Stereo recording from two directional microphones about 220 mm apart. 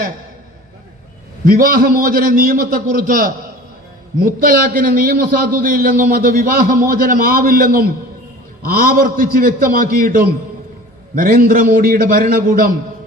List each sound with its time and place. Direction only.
1.5 s a man's voice: 40° right (ahead or behind)